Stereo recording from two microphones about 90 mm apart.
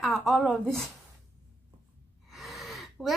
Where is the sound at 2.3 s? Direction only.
Centre (ahead or behind).